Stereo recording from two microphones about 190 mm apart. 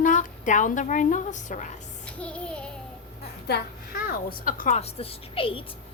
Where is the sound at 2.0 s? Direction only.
5° left (ahead or behind).